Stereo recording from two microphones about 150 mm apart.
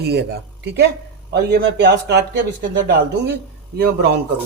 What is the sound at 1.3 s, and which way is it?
Speech, 90° right.